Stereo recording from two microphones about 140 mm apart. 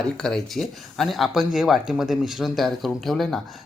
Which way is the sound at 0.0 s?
5° left (ahead or behind).